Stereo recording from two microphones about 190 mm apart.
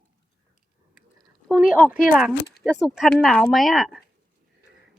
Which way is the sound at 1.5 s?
5° right (ahead or behind).